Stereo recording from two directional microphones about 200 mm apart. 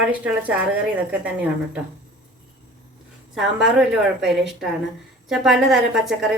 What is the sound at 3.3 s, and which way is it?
A woman's voice, 5° right (ahead or behind).